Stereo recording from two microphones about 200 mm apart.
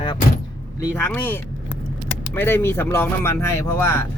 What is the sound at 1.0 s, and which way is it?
Speech, 10° left (ahead or behind).